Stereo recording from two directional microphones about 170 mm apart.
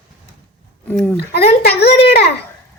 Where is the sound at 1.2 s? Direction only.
70° left (ahead or behind).